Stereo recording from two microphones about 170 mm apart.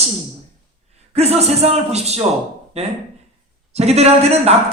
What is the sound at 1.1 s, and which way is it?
A man's voice, 40° right (ahead or behind).